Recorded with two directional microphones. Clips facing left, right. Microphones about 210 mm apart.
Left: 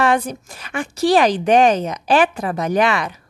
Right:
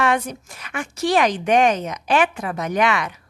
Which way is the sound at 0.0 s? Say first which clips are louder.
Left 3 dB; 35° left (ahead or behind).